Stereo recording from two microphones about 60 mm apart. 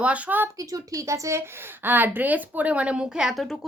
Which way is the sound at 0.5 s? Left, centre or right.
Right.